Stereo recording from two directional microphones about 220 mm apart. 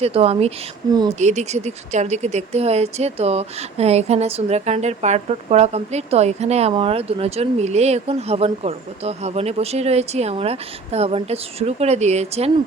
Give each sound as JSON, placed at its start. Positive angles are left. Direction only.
{"t": 0.0, "sound": "speech", "side_deg": -25}